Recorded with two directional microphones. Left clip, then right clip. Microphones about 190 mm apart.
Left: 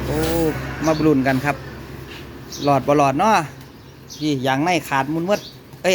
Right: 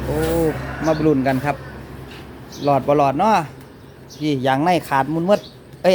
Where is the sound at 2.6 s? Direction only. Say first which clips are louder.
Even; centre (ahead or behind).